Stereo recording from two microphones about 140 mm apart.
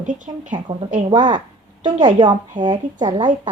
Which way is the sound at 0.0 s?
65° right (ahead or behind).